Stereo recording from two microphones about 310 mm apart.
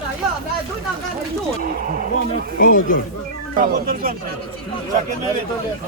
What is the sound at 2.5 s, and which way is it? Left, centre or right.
Speech, left.